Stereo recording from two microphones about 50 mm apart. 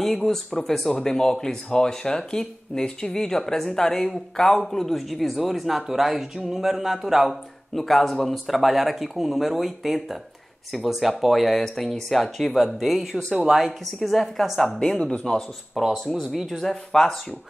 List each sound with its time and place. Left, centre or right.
0.0 s speech: centre
12.7 s speech: centre
14.8 s speech: centre
15.9 s speech: centre